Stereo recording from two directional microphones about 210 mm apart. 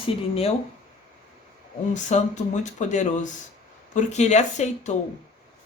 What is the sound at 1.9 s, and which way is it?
Speech, 35° left (ahead or behind).